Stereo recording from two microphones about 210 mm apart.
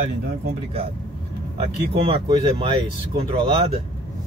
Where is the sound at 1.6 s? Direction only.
25° right (ahead or behind).